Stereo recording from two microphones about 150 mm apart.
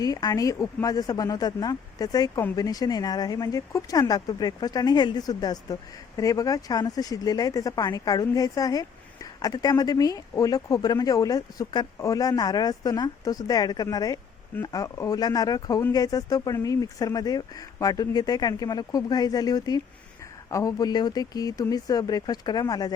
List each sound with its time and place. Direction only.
0.0 s speech: 25° left (ahead or behind)